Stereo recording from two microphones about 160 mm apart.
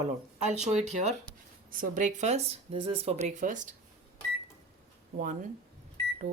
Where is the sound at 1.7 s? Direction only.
55° right (ahead or behind).